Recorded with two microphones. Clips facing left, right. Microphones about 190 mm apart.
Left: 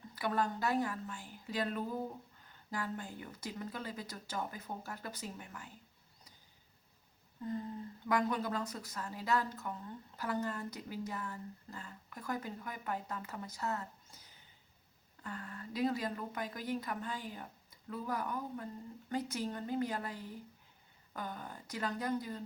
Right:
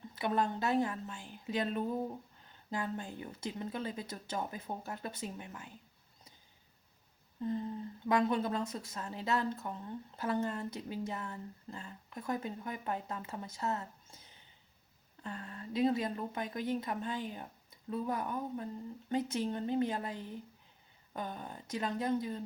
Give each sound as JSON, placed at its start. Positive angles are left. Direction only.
{"t": 0.2, "sound": "a woman's voice", "side_deg": -20}
{"t": 8.0, "sound": "a woman's voice", "side_deg": -25}